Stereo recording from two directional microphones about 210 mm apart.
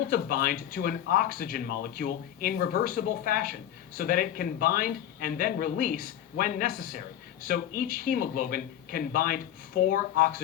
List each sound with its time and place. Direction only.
0.1 s speech: 40° left (ahead or behind)